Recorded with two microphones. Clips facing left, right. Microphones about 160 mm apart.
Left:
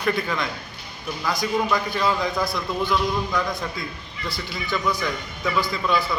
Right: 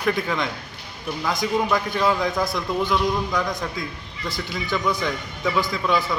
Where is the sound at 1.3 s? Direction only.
20° right (ahead or behind).